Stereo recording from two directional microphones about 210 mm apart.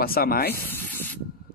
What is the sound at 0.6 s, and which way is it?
Sanding, 10° left (ahead or behind).